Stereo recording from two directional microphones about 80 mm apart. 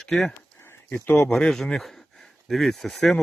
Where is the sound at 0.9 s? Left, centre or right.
Left.